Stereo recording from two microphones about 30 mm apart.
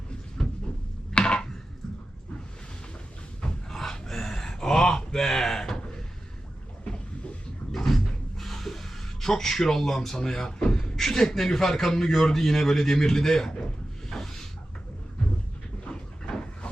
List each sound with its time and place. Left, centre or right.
0.4 s cupboard open or close: centre
1.2 s chopping: left
3.7 s a sound: centre
7.7 s a sound: centre
10.2 s a man's voice: left
14.1 s cupboard open or close: centre
15.9 s vehicle: left